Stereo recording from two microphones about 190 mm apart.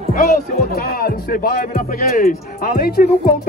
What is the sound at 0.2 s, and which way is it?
Speech, 55° left (ahead or behind).